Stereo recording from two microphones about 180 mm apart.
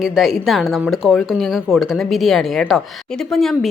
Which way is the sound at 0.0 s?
Centre (ahead or behind).